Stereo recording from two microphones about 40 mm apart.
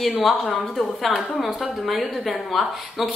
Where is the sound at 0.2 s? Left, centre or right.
Centre.